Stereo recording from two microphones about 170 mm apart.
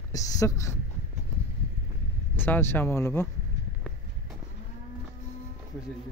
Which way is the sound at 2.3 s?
10° left (ahead or behind).